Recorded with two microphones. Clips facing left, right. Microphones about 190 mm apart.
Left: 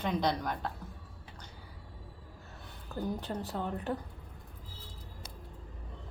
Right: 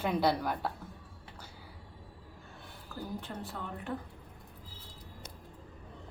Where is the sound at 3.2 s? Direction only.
40° left (ahead or behind).